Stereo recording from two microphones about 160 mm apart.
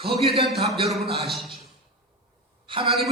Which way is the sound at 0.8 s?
Centre (ahead or behind).